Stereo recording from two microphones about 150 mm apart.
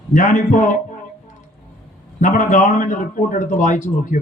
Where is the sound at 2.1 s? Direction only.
55° left (ahead or behind).